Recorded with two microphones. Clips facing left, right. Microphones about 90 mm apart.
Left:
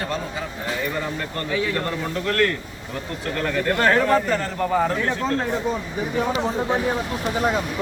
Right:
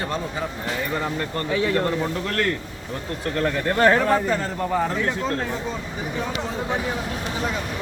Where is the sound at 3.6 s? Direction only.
20° right (ahead or behind); by 4.9 s centre (ahead or behind).